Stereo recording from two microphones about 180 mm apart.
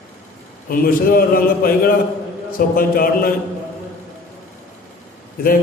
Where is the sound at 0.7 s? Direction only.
55° left (ahead or behind).